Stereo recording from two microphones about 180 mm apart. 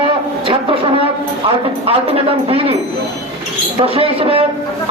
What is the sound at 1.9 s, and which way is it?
Speech, 30° right (ahead or behind).